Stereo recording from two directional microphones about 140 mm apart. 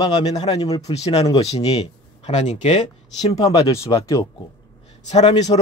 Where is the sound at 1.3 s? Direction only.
45° left (ahead or behind).